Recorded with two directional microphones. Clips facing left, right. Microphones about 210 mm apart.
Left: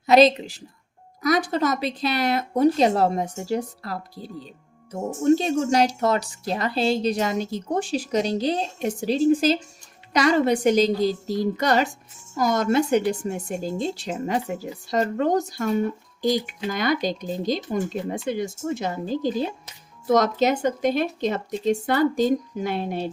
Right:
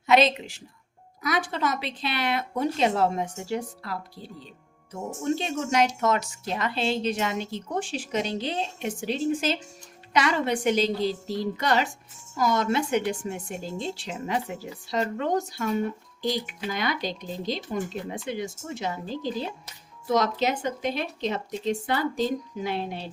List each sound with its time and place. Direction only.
0.0 s a woman's voice: 35° left (ahead or behind)